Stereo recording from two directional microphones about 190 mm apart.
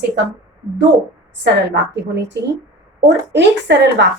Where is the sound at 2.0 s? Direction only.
65° right (ahead or behind).